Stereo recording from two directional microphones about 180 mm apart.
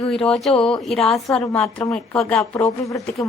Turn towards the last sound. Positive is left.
turn(degrees=15)  # may be behind; listen again after turning